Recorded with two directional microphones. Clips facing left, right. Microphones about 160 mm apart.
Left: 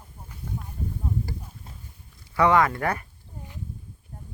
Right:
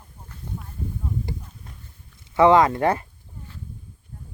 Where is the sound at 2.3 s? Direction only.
25° right (ahead or behind).